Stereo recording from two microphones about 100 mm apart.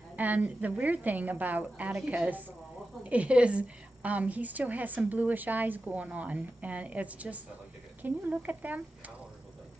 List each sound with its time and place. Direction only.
0.1 s a woman's voice: 15° right (ahead or behind)